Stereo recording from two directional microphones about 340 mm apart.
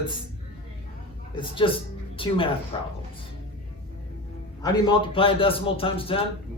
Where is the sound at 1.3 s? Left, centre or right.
Centre.